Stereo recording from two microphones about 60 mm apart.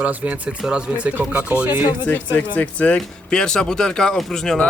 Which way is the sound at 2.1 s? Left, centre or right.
Left.